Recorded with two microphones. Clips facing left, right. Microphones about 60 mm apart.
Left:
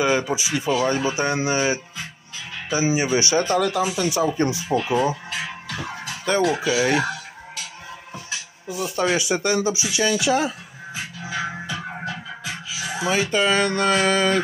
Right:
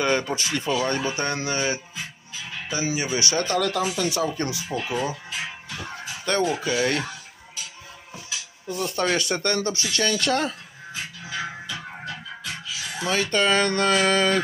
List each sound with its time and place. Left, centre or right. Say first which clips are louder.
0.0 s speech: left 3 dB; centre; by 4.9 s left
5.7 s music: left 4 dB; left
6.4 s speech: left 4 dB; left
7.0 s music: left 7 dB; left
8.6 s speech: left 2 dB; centre
11.2 s music: left 5 dB; centre